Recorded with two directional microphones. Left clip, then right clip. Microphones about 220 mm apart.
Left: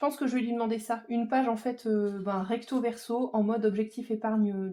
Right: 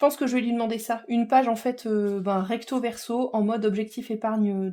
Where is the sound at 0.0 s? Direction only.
50° right (ahead or behind).